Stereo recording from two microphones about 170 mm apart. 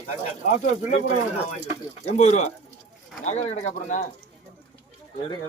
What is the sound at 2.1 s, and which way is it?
Speech, 45° left (ahead or behind).